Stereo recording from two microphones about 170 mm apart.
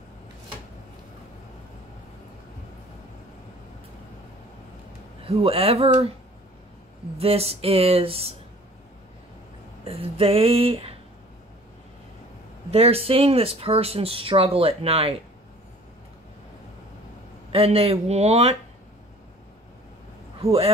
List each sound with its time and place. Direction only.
5.2 s speech: 35° right (ahead or behind)
7.2 s speech: 35° right (ahead or behind)
9.8 s speech: 35° right (ahead or behind)
12.7 s speech: 35° right (ahead or behind)
17.5 s speech: 35° right (ahead or behind)